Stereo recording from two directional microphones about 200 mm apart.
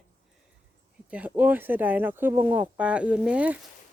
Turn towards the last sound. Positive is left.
turn(degrees=-5)  # may be behind; listen again after turning